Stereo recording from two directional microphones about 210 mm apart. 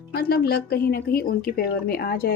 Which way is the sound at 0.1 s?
50° left (ahead or behind).